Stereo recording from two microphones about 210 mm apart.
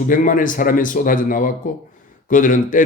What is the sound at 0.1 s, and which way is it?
A man's voice, 40° left (ahead or behind).